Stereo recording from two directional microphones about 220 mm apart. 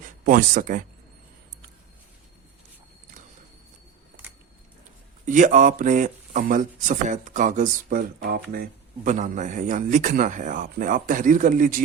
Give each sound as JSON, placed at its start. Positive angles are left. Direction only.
{"t": 0.0, "sound": "speech", "side_deg": -40}
{"t": 4.2, "sound": "a sound", "side_deg": -5}
{"t": 5.2, "sound": "speech", "side_deg": -35}